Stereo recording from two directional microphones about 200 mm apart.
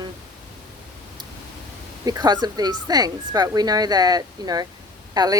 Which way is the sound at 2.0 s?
20° right (ahead or behind).